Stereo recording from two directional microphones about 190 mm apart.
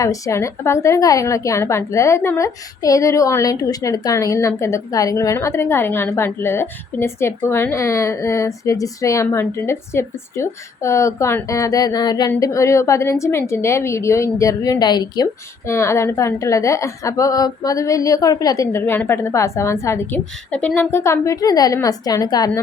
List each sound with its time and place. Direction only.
0.0 s a woman's voice: 15° left (ahead or behind)